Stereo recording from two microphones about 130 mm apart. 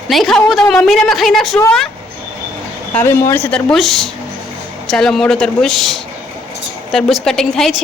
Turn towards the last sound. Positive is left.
turn(degrees=0)  # may be behind; listen again after turning